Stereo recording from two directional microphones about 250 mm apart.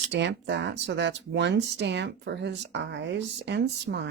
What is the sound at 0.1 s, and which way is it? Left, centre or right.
Speech, right.